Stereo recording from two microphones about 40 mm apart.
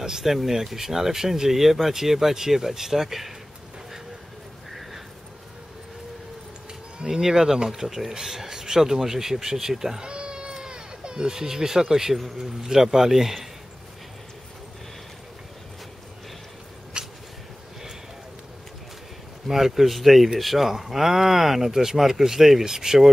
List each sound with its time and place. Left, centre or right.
0.0 s speech: centre
7.0 s speech: centre
10.0 s cat: right; by 12.3 s centre
12.4 s speech: centre
17.0 s a sound: right
19.4 s speech: centre